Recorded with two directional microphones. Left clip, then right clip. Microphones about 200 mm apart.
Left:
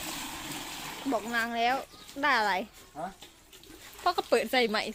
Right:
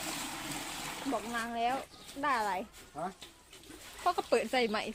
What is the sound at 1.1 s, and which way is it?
Speech, 30° left (ahead or behind).